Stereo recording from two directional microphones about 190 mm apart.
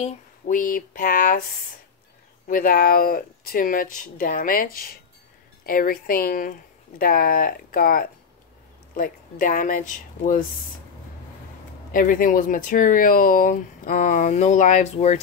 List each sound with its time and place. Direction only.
0.0 s speech: 45° left (ahead or behind)
2.4 s speech: 50° left (ahead or behind)
11.9 s speech: 45° left (ahead or behind)